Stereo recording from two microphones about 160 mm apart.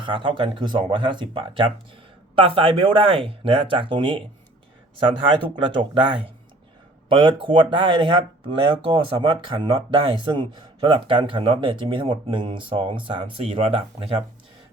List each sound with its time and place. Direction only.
0.0 s speech: 30° right (ahead or behind)
5.5 s speech: 30° right (ahead or behind)